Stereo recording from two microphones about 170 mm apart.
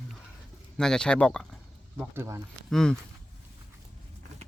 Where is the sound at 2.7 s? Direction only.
5° left (ahead or behind).